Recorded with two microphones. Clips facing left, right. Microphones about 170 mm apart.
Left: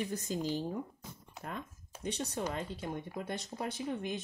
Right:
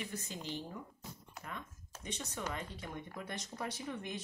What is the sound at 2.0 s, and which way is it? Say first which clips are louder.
Speech: left 6 dB; 35° left (ahead or behind).